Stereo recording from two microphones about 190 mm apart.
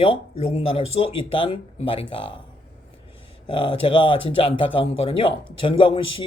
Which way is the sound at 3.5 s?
25° left (ahead or behind).